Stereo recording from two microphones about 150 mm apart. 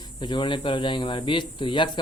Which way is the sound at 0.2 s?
30° left (ahead or behind).